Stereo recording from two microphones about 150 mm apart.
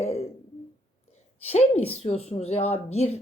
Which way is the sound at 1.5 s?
40° left (ahead or behind).